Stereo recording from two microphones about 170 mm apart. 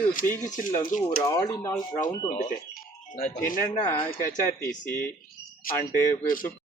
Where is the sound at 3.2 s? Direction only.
50° left (ahead or behind).